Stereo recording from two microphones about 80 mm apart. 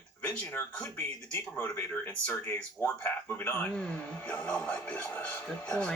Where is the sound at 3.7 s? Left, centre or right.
Centre.